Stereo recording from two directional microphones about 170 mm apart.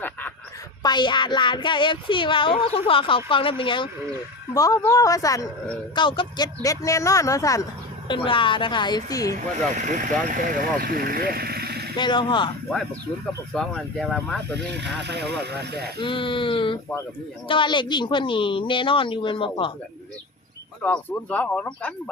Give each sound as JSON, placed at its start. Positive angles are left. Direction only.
{"t": 0.8, "sound": "speech", "side_deg": 25}
{"t": 8.0, "sound": "speech", "side_deg": 30}
{"t": 9.7, "sound": "speech", "side_deg": -45}
{"t": 11.9, "sound": "speech", "side_deg": 25}
{"t": 13.5, "sound": "speech", "side_deg": 0}
{"t": 14.7, "sound": "speech", "side_deg": -90}
{"t": 16.0, "sound": "speech", "side_deg": 30}
{"t": 20.8, "sound": "speech", "side_deg": 10}